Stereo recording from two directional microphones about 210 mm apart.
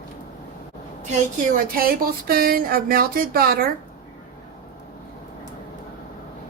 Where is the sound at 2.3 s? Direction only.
45° right (ahead or behind).